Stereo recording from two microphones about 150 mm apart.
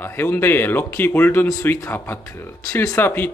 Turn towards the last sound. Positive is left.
turn(degrees=15)  # may be behind; listen again after turning